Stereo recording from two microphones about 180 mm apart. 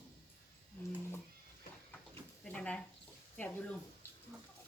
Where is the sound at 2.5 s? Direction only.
5° left (ahead or behind).